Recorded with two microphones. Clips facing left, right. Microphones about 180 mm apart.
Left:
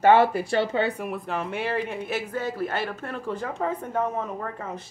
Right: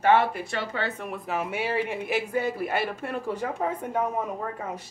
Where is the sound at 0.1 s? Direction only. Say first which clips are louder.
Left 1 dB; 35° left (ahead or behind).